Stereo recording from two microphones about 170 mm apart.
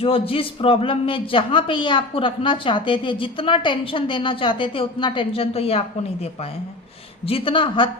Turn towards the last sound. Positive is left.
turn(degrees=30)  # may be behind; listen again after turning